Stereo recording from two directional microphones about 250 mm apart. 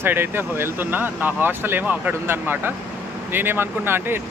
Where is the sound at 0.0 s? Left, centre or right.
Centre.